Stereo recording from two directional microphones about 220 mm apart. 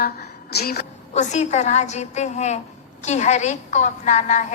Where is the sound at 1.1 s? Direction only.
30° left (ahead or behind).